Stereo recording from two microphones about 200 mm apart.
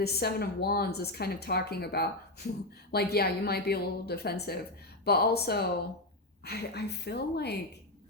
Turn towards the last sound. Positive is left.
turn(degrees=55)  # may be behind; listen again after turning